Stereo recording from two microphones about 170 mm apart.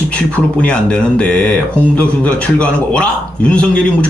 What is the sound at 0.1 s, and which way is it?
A man's voice, 5° left (ahead or behind).